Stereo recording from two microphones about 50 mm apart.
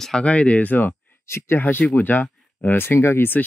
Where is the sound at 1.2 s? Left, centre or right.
Left.